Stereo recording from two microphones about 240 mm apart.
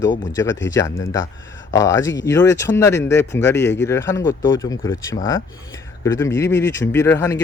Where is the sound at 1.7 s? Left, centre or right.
Centre.